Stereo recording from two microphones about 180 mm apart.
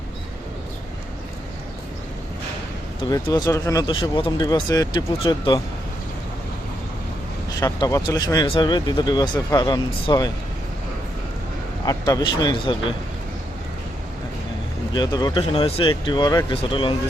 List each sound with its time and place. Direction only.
3.0 s speech: 25° left (ahead or behind)
7.6 s speech: 20° left (ahead or behind)
11.9 s speech: 20° left (ahead or behind)
14.9 s speech: 25° left (ahead or behind)